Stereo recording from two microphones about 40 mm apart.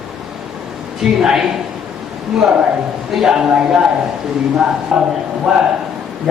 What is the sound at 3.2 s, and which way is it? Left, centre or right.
Speech, centre.